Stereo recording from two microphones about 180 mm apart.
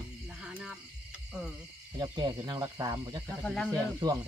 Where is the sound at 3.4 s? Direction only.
5° left (ahead or behind).